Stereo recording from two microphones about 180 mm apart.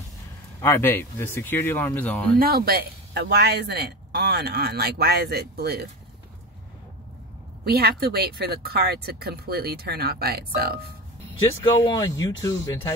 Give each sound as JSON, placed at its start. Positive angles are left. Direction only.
{"t": 0.6, "sound": "speech", "side_deg": 10}
{"t": 2.3, "sound": "speech", "side_deg": -55}
{"t": 7.6, "sound": "speech", "side_deg": -60}
{"t": 11.7, "sound": "speech", "side_deg": 20}